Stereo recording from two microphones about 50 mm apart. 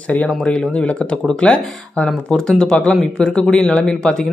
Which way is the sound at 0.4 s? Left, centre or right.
Centre.